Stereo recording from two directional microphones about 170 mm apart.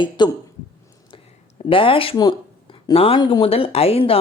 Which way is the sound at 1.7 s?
30° left (ahead or behind).